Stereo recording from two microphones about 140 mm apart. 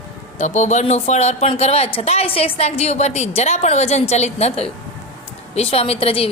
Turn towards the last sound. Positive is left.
turn(degrees=40)  # may be behind; listen again after turning